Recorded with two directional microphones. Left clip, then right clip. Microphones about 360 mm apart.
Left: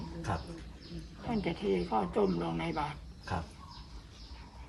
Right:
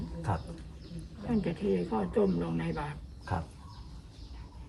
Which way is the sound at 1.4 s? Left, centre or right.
Centre.